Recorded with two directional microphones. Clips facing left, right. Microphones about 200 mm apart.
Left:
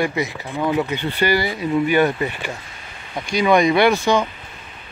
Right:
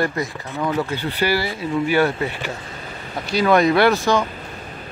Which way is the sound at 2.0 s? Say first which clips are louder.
Left 1 dB; 15° left (ahead or behind).